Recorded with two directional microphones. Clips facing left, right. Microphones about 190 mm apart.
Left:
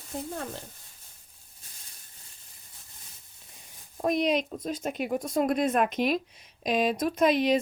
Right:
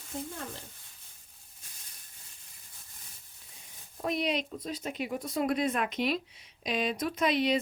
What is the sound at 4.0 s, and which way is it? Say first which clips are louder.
Speech: left 5 dB; 45° left (ahead or behind).